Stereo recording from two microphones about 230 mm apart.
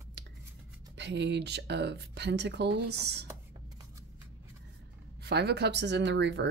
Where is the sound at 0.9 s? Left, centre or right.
Right.